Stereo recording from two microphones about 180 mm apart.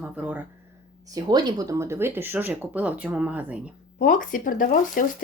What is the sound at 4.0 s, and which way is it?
Speech, 50° left (ahead or behind).